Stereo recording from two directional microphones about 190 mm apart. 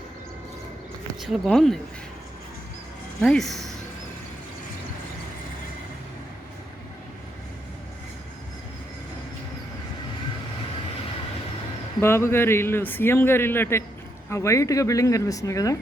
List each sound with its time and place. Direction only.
1.2 s speech: centre (ahead or behind)
3.2 s speech: 5° left (ahead or behind)
11.9 s speech: 15° left (ahead or behind)